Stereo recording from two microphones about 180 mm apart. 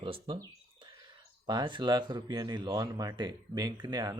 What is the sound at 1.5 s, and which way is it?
Speech, 25° right (ahead or behind).